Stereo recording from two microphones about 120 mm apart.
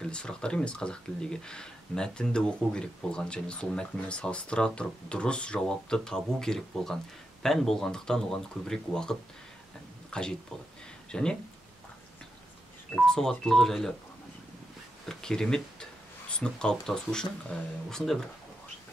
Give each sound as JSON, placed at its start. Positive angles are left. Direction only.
{"t": 0.0, "sound": "speech", "side_deg": 5}
{"t": 10.1, "sound": "speech", "side_deg": 10}
{"t": 12.9, "sound": "speech", "side_deg": 5}
{"t": 15.0, "sound": "speech", "side_deg": 5}